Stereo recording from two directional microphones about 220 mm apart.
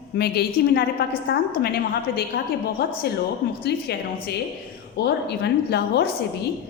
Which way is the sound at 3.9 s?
45° left (ahead or behind).